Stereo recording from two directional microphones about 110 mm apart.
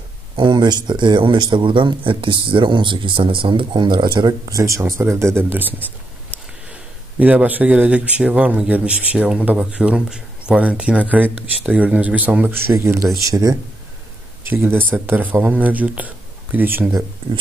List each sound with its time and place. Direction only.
0.4 s speech: 40° right (ahead or behind)
4.5 s a man's voice: 30° right (ahead or behind)
12.7 s speech: 25° right (ahead or behind)
14.4 s a man's voice: 20° right (ahead or behind)
17.2 s speech: 55° right (ahead or behind)